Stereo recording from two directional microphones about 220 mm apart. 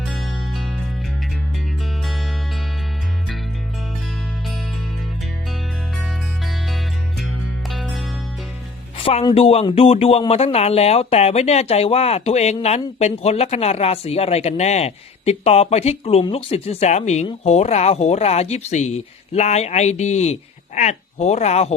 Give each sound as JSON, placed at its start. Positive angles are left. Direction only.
{"t": 0.0, "sound": "music", "side_deg": 0}
{"t": 6.0, "sound": "music", "side_deg": 0}
{"t": 9.0, "sound": "speech", "side_deg": 25}